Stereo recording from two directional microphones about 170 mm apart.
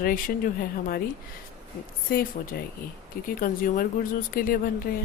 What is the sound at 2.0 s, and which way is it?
A woman's voice, 60° left (ahead or behind).